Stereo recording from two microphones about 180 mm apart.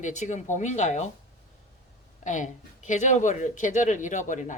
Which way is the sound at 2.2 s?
45° left (ahead or behind).